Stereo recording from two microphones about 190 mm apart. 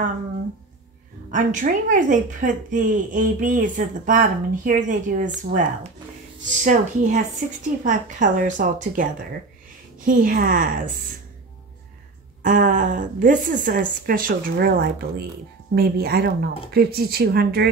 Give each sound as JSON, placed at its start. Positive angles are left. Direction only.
{"t": 1.3, "sound": "a woman's voice", "side_deg": -45}
{"t": 10.0, "sound": "a woman's voice", "side_deg": -45}
{"t": 12.4, "sound": "a woman's voice", "side_deg": -45}